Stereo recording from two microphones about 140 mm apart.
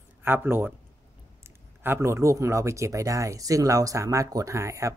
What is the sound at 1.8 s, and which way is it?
Speech, 20° right (ahead or behind).